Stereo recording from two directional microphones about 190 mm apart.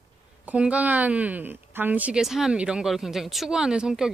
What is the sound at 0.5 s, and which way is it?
Speech, 5° right (ahead or behind).